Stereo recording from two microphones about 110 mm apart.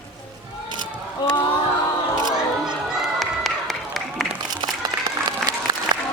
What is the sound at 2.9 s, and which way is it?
Run, centre (ahead or behind).